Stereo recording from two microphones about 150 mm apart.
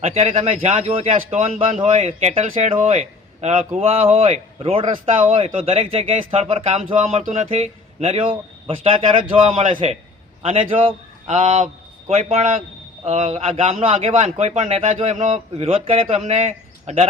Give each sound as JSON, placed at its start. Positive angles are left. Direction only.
{"t": 0.0, "sound": "a man's voice", "side_deg": -45}
{"t": 14.8, "sound": "speech", "side_deg": -60}
{"t": 15.5, "sound": "a man's voice", "side_deg": -40}